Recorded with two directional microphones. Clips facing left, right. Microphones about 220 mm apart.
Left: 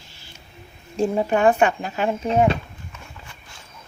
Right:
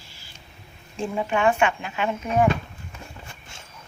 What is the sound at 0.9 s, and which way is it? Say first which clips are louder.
Speech: left 5 dB; 40° left (ahead or behind).